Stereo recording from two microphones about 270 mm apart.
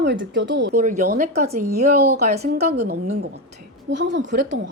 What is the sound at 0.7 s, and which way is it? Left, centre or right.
Speech, right.